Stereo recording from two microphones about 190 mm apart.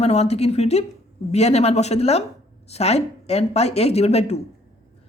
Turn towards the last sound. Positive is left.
turn(degrees=35)  # may be behind; listen again after turning